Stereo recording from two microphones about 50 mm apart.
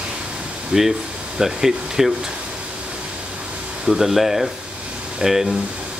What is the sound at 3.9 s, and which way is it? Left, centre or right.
Speech, centre.